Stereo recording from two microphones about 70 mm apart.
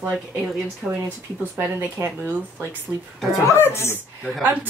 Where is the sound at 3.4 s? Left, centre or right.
Left.